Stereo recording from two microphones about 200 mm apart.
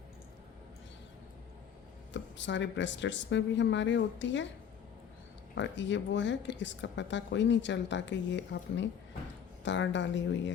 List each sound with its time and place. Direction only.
2.1 s speech: 65° left (ahead or behind)
5.5 s speech: 65° left (ahead or behind)